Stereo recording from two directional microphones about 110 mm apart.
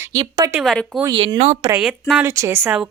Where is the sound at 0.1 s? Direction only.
35° right (ahead or behind).